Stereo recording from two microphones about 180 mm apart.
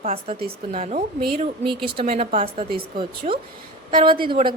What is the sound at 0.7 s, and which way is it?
A woman's voice, 40° right (ahead or behind).